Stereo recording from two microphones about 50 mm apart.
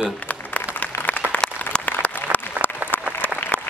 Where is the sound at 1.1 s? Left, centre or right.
Left.